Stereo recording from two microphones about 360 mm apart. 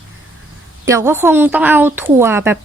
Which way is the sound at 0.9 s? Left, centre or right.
Centre.